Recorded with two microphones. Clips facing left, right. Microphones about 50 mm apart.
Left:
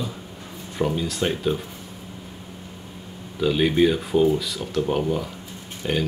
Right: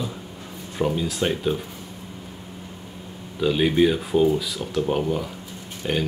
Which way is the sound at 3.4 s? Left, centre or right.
Centre.